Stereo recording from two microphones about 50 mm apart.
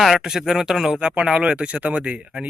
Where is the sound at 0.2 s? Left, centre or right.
Centre.